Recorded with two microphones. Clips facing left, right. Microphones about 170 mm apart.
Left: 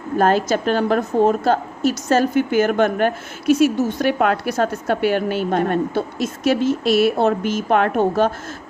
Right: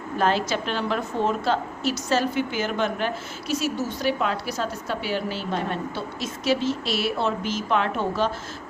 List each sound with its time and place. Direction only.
0.2 s a woman's voice: 45° left (ahead or behind)